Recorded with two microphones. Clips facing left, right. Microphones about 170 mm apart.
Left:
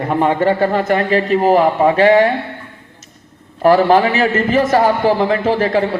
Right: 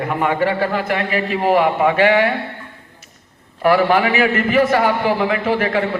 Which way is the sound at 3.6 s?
40° left (ahead or behind).